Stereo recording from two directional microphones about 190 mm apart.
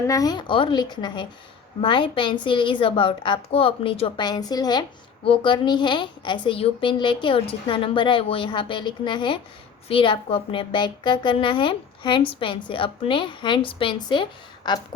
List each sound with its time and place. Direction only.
0.0 s a woman's voice: 20° left (ahead or behind)